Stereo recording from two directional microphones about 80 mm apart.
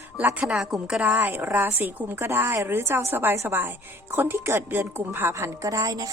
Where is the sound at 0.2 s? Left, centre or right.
Centre.